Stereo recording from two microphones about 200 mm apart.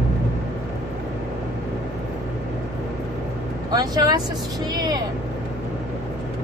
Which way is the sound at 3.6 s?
20° right (ahead or behind).